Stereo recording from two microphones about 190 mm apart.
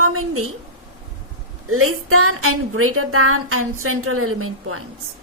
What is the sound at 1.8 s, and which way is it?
Speech, 90° right.